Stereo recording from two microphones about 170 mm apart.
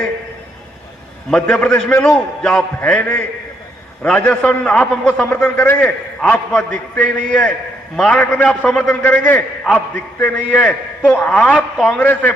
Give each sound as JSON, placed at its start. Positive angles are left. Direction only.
{"t": 1.3, "sound": "a man's voice", "side_deg": 5}